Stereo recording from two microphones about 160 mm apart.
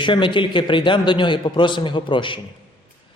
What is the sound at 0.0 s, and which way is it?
A man's voice, 30° left (ahead or behind).